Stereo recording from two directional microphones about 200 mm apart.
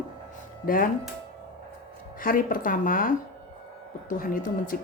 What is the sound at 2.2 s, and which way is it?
Speech, 45° left (ahead or behind).